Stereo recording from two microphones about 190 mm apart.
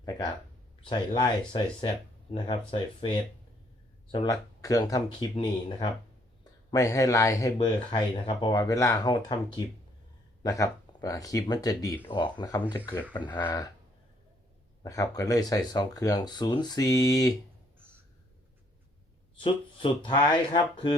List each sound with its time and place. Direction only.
0.0 s speech: 20° left (ahead or behind)
14.8 s speech: 20° left (ahead or behind)
19.4 s speech: 25° left (ahead or behind)